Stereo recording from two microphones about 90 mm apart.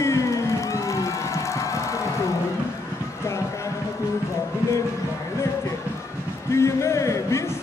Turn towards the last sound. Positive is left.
turn(degrees=35)  # may be behind; listen again after turning